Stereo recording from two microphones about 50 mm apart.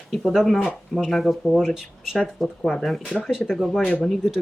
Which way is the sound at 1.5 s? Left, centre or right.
Centre.